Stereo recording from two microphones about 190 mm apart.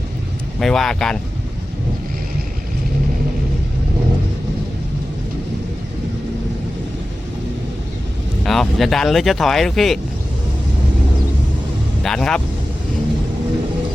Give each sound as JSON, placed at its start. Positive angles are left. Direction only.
{"t": 0.6, "sound": "speech", "side_deg": 0}
{"t": 8.4, "sound": "speech", "side_deg": 0}
{"t": 12.0, "sound": "speech", "side_deg": 5}